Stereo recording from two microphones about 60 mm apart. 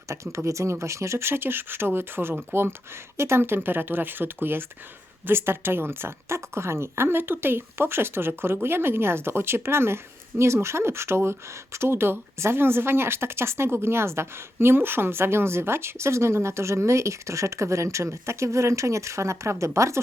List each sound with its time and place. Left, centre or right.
0.1 s a woman's voice: right